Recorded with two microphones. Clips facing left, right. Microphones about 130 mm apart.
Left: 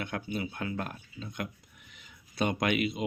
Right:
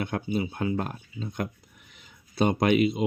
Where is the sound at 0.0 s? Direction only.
30° right (ahead or behind).